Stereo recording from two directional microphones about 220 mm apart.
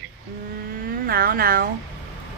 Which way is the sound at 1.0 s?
40° right (ahead or behind).